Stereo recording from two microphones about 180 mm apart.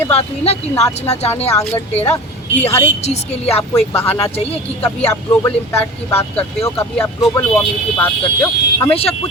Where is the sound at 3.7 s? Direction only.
10° left (ahead or behind).